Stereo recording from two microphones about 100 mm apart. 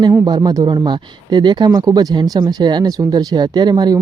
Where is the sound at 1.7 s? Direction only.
40° right (ahead or behind).